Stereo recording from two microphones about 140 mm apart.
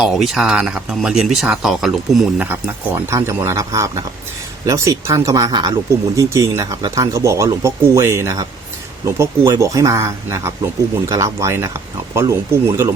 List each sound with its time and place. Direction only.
0.0 s speech: centre (ahead or behind); by 12.9 s 20° right (ahead or behind)